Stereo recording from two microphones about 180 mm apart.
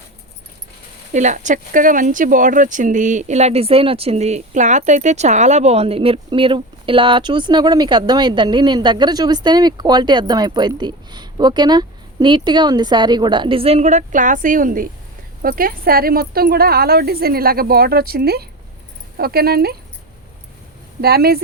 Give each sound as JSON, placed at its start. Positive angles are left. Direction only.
{"t": 1.1, "sound": "speech", "side_deg": -40}
{"t": 21.0, "sound": "speech", "side_deg": -60}